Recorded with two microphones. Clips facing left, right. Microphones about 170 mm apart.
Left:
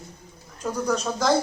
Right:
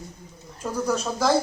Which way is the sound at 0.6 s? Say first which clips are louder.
Even; 5° right (ahead or behind).